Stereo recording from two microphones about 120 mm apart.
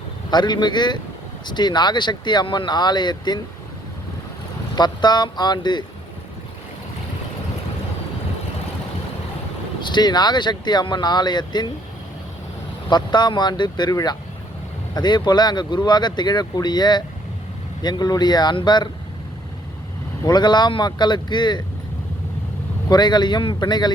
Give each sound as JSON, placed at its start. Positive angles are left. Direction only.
{"t": 0.3, "sound": "speech", "side_deg": 35}
{"t": 4.7, "sound": "speech", "side_deg": 35}
{"t": 9.8, "sound": "speech", "side_deg": 35}
{"t": 12.9, "sound": "speech", "side_deg": 40}
{"t": 20.2, "sound": "speech", "side_deg": 35}
{"t": 22.9, "sound": "speech", "side_deg": 35}